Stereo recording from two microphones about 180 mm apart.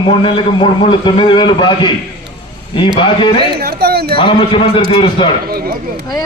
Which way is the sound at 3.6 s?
60° right (ahead or behind).